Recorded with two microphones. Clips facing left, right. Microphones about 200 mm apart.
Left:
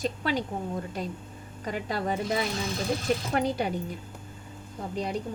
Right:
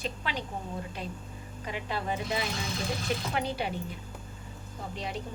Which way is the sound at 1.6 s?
40° left (ahead or behind).